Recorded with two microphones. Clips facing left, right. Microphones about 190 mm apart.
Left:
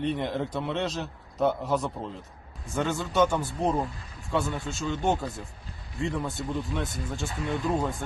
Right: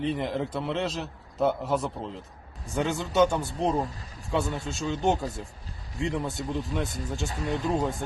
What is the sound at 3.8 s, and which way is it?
Speech, 40° right (ahead or behind).